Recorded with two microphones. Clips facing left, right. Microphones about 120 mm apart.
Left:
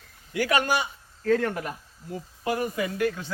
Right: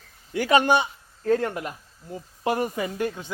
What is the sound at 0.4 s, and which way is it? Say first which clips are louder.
Speech: right 5 dB; 25° right (ahead or behind).